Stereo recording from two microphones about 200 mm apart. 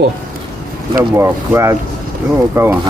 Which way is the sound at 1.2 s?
15° right (ahead or behind).